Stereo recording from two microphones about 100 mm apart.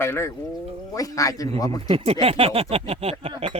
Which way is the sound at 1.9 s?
75° right (ahead or behind).